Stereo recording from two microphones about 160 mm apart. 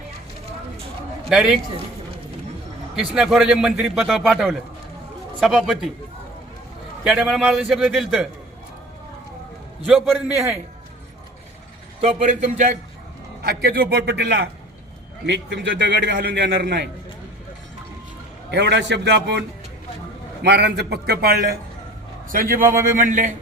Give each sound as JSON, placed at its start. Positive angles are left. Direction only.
{"t": 3.2, "sound": "a man's voice", "side_deg": -5}
{"t": 7.0, "sound": "a man's voice", "side_deg": -5}
{"t": 9.8, "sound": "a man's voice", "side_deg": -5}
{"t": 11.9, "sound": "a man's voice", "side_deg": -45}
{"t": 13.4, "sound": "a man's voice", "side_deg": -85}
{"t": 18.5, "sound": "a man's voice", "side_deg": -90}
{"t": 20.4, "sound": "a man's voice", "side_deg": -90}
{"t": 22.3, "sound": "a man's voice", "side_deg": -60}